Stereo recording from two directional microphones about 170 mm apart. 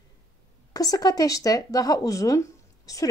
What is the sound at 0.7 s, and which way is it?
A woman's voice, 20° left (ahead or behind).